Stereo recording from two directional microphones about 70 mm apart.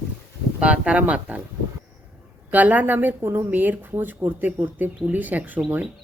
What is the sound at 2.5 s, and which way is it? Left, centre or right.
Speech, right.